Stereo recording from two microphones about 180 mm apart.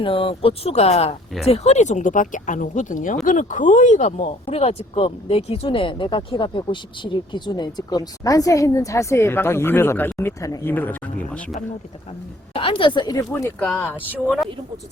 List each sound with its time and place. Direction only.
0.0 s speech: 30° left (ahead or behind); by 11.6 s 5° left (ahead or behind)
12.5 s speech: 30° left (ahead or behind)
13.7 s speech: 10° left (ahead or behind)